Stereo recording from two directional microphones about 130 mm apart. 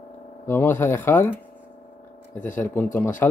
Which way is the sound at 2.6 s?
15° left (ahead or behind).